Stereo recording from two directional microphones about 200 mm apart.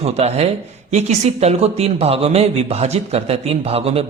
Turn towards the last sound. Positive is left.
turn(degrees=-30)  # may be behind; listen again after turning